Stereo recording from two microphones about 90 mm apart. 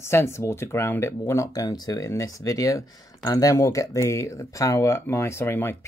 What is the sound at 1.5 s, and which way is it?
Speech, 45° left (ahead or behind).